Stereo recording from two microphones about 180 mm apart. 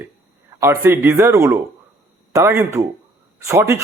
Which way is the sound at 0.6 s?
15° right (ahead or behind).